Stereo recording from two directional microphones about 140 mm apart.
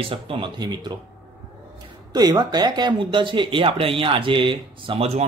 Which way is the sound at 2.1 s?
30° right (ahead or behind).